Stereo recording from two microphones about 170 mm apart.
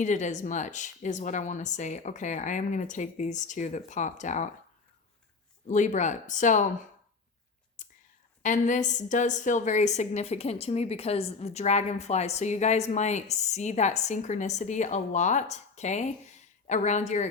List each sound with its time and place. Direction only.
0.0 s a woman's voice: 45° left (ahead or behind)
5.6 s a woman's voice: 45° left (ahead or behind)
7.8 s whispering: 45° left (ahead or behind)
8.4 s a woman's voice: 45° left (ahead or behind)